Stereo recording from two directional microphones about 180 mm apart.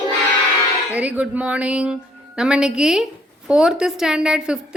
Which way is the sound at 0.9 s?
10° right (ahead or behind).